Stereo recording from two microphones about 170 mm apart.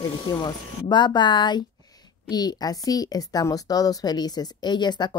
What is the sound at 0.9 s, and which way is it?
A woman's voice, 25° left (ahead or behind).